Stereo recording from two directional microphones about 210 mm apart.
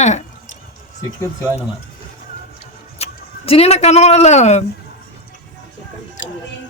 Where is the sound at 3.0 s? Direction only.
30° left (ahead or behind).